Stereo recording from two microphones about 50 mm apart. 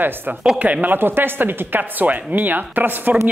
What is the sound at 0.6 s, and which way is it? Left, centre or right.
Speech, right.